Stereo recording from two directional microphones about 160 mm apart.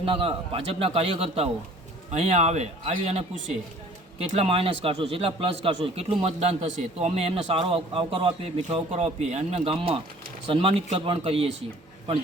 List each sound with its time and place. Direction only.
0.0 s a man's voice: 35° right (ahead or behind)